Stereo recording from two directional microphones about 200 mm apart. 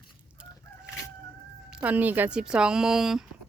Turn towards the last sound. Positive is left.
turn(degrees=0)  # may be behind; listen again after turning